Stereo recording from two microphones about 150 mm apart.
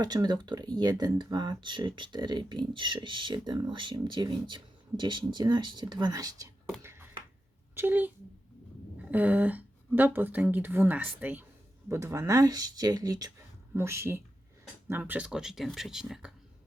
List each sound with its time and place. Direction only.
0.0 s speech: 25° right (ahead or behind)
6.8 s a sound: 15° right (ahead or behind)
7.8 s speech: 10° right (ahead or behind)